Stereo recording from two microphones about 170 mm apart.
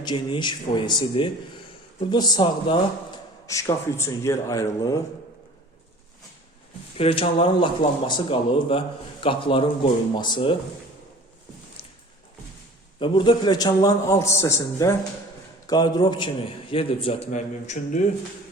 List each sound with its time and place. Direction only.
0.0 s speech: 25° left (ahead or behind)
6.9 s speech: 35° left (ahead or behind)
13.0 s speech: 30° left (ahead or behind); by 18.0 s 45° left (ahead or behind)